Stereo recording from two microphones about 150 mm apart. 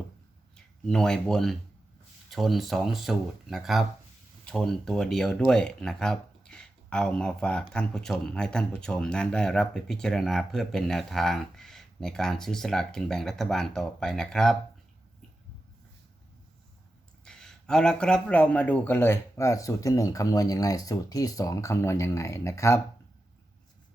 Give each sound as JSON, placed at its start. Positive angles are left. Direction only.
{"t": 0.5, "sound": "speech", "side_deg": 5}
{"t": 17.2, "sound": "a man's voice", "side_deg": 5}